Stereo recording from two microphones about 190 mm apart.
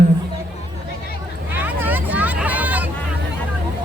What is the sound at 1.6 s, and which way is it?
Hubbub, 10° right (ahead or behind).